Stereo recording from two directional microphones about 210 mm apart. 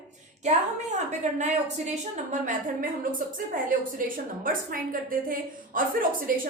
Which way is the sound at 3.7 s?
40° right (ahead or behind).